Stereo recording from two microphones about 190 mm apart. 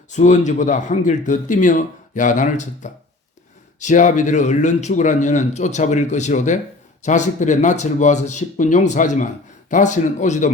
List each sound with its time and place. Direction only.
0.1 s speech: 40° left (ahead or behind)